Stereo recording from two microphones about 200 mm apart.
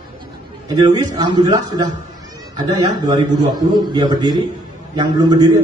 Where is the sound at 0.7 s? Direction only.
20° right (ahead or behind).